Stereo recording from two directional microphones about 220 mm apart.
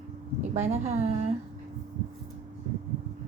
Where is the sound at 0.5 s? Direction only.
30° right (ahead or behind).